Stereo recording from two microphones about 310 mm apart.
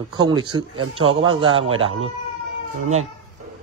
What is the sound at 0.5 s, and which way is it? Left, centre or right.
Speech, centre.